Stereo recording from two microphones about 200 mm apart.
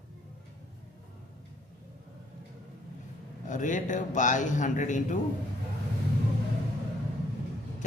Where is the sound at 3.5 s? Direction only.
40° left (ahead or behind).